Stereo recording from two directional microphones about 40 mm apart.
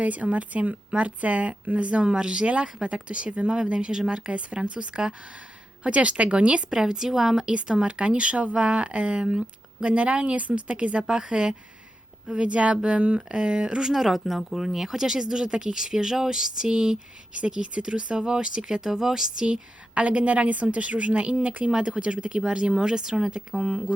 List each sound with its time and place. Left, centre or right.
0.0 s speech: right
6.7 s speech: centre; by 13.2 s right
13.2 s speech: right
19.9 s speech: right; by 23.8 s centre